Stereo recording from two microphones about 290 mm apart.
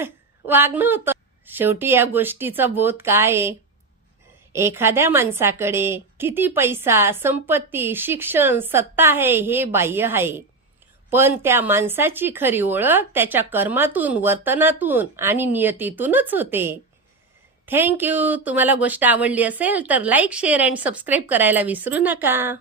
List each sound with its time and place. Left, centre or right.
0.0 s a woman's voice: centre
4.5 s a woman's voice: centre